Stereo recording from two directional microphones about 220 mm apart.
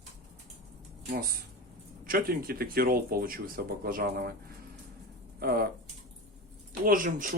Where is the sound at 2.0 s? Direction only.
40° right (ahead or behind).